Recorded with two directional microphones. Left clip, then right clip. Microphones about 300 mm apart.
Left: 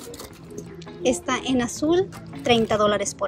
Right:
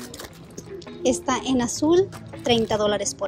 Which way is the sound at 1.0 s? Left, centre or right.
Centre.